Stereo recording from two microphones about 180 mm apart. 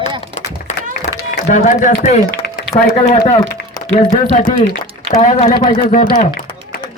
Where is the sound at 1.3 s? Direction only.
45° left (ahead or behind).